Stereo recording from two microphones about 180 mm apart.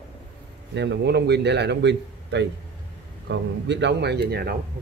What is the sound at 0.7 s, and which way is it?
Speech, 75° right (ahead or behind).